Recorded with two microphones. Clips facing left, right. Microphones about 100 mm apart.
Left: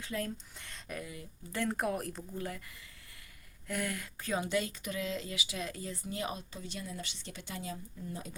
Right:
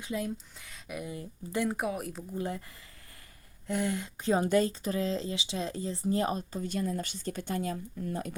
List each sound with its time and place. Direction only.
0.0 s speech: 15° right (ahead or behind)
0.6 s speech: 5° right (ahead or behind)
1.0 s speech: 30° right (ahead or behind)
1.5 s speech: 10° right (ahead or behind)
2.3 s speech: 25° right (ahead or behind)
3.7 s speech: 25° right (ahead or behind)
4.4 s speech: 40° right (ahead or behind); by 8.4 s 60° right (ahead or behind)